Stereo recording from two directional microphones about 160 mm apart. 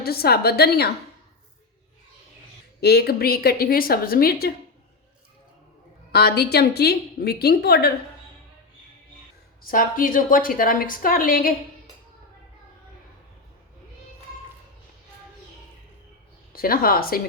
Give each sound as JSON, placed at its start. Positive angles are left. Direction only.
{"t": 0.0, "sound": "a woman's voice", "side_deg": 75}
{"t": 2.8, "sound": "a woman's voice", "side_deg": 80}
{"t": 6.1, "sound": "a woman's voice", "side_deg": 85}
{"t": 9.6, "sound": "a woman's voice", "side_deg": 60}
{"t": 16.5, "sound": "a woman's voice", "side_deg": 65}